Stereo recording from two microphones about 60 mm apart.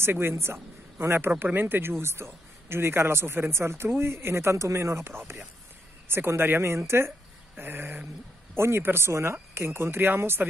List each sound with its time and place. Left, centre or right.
0.0 s a man's voice: right
7.5 s a sound: right
8.5 s a man's voice: right